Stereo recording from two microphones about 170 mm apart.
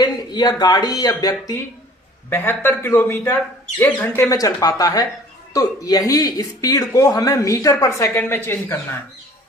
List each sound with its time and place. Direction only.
0.0 s speech: 25° left (ahead or behind)